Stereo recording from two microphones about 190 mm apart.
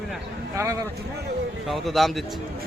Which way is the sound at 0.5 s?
15° right (ahead or behind).